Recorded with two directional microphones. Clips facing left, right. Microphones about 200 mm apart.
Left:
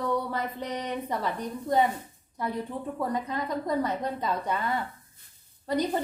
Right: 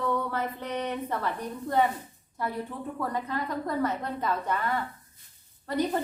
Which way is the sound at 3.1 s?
15° left (ahead or behind).